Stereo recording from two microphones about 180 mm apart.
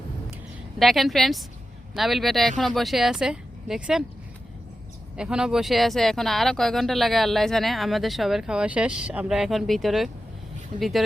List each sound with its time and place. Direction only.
0.8 s speech: centre (ahead or behind)
5.1 s speech: 5° right (ahead or behind)